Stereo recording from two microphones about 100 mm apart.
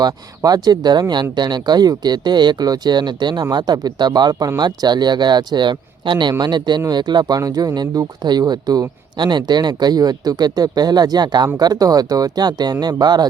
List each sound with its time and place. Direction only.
0.0 s speech: 40° right (ahead or behind)